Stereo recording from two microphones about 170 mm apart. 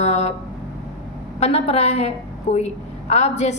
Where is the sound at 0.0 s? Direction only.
40° left (ahead or behind).